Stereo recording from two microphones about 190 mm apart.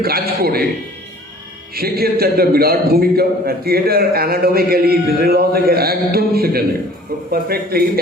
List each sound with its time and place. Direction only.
0.0 s a man's voice: 55° right (ahead or behind)
1.7 s a man's voice: 55° right (ahead or behind)